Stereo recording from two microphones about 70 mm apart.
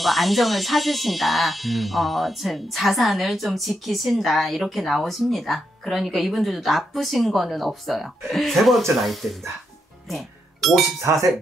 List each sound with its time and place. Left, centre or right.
0.0 s speech: centre
10.0 s music: centre
11.0 s speech: right